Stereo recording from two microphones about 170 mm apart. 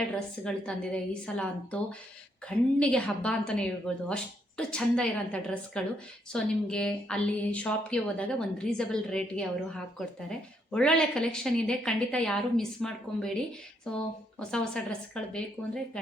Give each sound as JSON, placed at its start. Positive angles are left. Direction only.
{"t": 0.4, "sound": "a woman's voice", "side_deg": 5}